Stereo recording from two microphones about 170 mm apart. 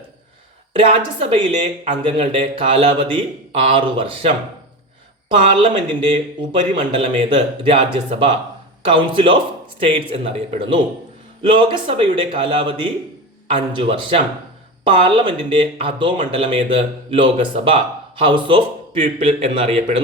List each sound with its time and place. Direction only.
0.8 s speech: 35° right (ahead or behind)
5.6 s speech: 30° right (ahead or behind)